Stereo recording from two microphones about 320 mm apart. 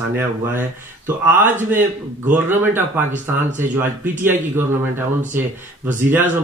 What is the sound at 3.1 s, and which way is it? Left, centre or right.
Speech, right.